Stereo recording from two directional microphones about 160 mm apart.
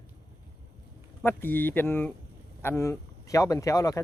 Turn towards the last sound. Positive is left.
turn(degrees=20)  # may be behind; listen again after turning